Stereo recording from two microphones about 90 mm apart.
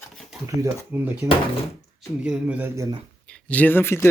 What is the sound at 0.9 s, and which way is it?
Speech, 20° right (ahead or behind).